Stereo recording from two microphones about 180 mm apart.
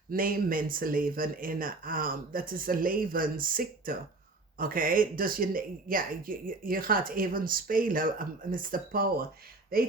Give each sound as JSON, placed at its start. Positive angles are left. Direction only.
{"t": 0.1, "sound": "speech", "side_deg": -55}